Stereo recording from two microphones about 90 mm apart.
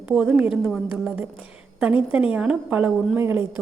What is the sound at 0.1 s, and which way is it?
A woman's voice, 15° right (ahead or behind).